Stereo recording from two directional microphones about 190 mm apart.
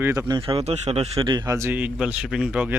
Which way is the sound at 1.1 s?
20° right (ahead or behind).